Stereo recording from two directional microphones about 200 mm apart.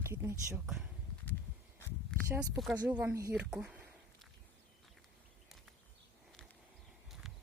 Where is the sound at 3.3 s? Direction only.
5° right (ahead or behind).